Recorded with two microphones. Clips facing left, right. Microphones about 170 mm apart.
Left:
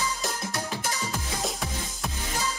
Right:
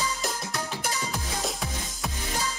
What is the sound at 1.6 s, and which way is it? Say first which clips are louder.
Music: even; centre (ahead or behind).